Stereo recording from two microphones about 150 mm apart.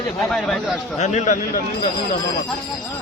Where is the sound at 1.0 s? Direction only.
50° left (ahead or behind).